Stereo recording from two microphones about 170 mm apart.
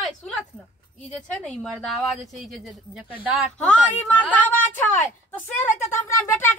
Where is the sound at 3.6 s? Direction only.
5° left (ahead or behind).